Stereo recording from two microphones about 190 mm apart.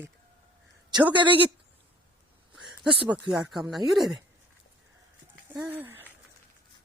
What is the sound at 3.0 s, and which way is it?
Speech, 25° right (ahead or behind).